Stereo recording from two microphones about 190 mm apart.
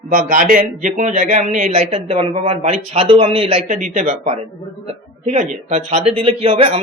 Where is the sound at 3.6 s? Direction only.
45° right (ahead or behind).